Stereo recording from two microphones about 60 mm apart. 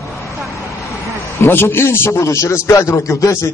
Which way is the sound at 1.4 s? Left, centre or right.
Left.